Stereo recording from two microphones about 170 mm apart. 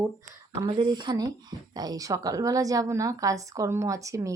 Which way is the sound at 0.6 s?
30° right (ahead or behind).